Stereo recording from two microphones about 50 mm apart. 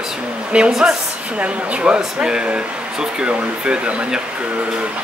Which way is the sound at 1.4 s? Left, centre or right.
Right.